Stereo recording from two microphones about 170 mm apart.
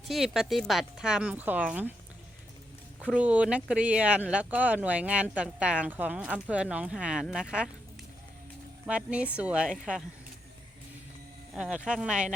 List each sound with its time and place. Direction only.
0.1 s speech: centre (ahead or behind)
3.0 s speech: 5° right (ahead or behind)
8.9 s speech: 5° right (ahead or behind)
11.5 s speech: 5° right (ahead or behind)